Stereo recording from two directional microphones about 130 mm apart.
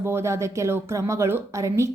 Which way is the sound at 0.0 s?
20° right (ahead or behind).